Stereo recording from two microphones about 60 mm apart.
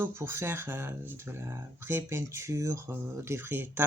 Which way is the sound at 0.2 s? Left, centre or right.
Right.